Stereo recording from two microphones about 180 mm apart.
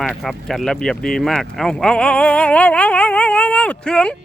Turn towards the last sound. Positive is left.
turn(degrees=5)  # may be behind; listen again after turning